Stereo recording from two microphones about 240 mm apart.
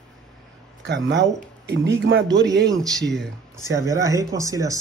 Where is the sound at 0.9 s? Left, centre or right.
Right.